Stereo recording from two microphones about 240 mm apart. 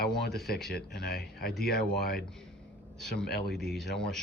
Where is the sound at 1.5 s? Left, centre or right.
Centre.